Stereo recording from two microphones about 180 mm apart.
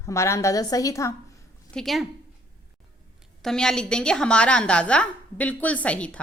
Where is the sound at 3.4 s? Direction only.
5° left (ahead or behind).